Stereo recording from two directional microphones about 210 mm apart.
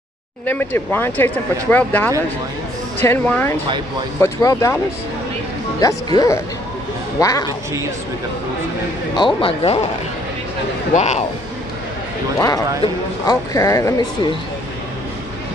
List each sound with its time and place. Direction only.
0.5 s speech: 10° left (ahead or behind)
5.8 s speech: 20° left (ahead or behind)
9.1 s speech: 25° left (ahead or behind)
11.0 s speech: 30° left (ahead or behind)
12.4 s speech: 20° left (ahead or behind)